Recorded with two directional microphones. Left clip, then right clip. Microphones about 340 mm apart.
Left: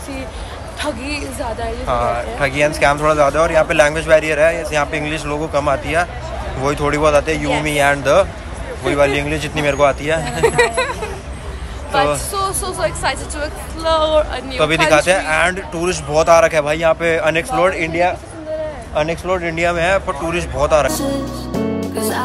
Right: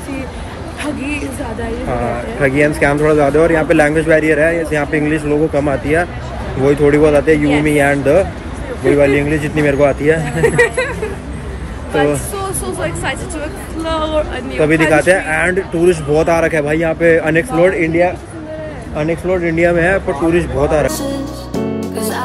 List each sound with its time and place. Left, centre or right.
1.0 s speech: centre
2.4 s speech: centre
21.7 s music: centre